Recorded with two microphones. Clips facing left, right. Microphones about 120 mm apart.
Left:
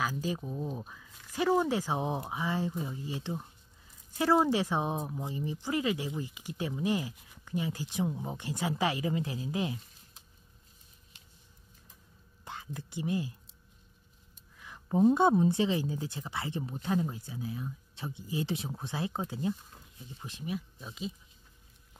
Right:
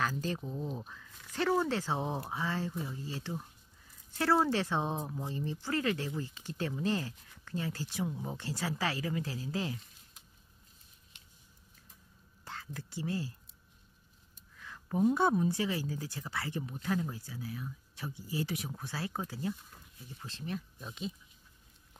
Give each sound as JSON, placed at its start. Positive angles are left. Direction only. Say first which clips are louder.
{"t": 0.0, "sound": "speech", "louder": "left 1 dB", "side_deg": 10}
{"t": 12.4, "sound": "speech", "louder": "left 2 dB", "side_deg": 20}
{"t": 14.6, "sound": "a woman's voice", "louder": "left 4 dB", "side_deg": 20}